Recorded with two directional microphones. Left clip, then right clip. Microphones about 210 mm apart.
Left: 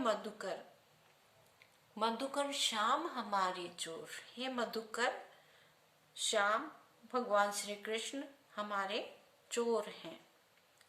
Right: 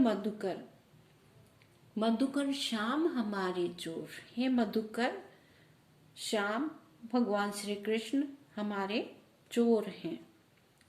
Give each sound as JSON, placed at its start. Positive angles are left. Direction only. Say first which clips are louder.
{"t": 0.0, "sound": "a woman's voice", "louder": "right 5 dB", "side_deg": 10}
{"t": 2.0, "sound": "a woman's voice", "louder": "right 3 dB", "side_deg": 20}
{"t": 6.2, "sound": "a woman's voice", "louder": "even", "side_deg": 10}